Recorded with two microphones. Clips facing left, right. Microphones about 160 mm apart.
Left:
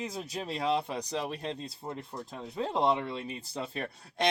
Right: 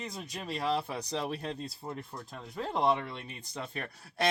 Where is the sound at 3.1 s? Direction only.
30° left (ahead or behind).